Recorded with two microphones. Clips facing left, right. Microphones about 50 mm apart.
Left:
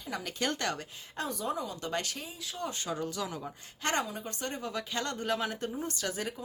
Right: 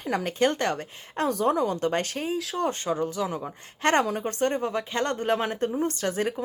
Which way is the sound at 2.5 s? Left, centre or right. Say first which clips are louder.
Right 6 dB; right.